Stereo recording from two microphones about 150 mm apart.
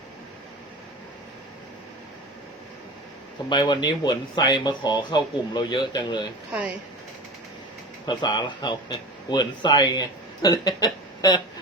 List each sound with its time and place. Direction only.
3.5 s speech: 30° left (ahead or behind)
8.0 s speech: 30° left (ahead or behind)